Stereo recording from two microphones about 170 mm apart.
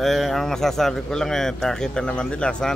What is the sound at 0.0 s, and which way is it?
A man's voice, centre (ahead or behind).